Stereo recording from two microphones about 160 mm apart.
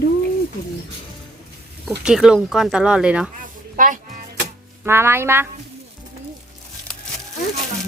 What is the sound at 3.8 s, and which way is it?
Speech, 55° right (ahead or behind).